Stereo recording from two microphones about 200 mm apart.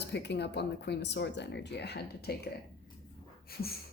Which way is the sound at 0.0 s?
60° left (ahead or behind).